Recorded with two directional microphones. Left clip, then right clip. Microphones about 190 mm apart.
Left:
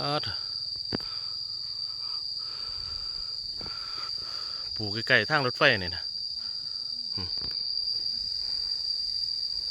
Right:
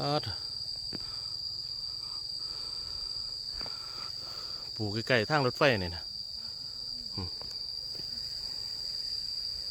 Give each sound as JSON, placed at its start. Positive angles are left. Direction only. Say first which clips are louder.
{"t": 5.0, "sound": "speech", "louder": "left 4 dB", "side_deg": 0}